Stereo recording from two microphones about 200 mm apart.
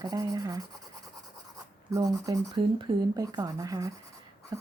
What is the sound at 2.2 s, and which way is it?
Speech, 15° right (ahead or behind).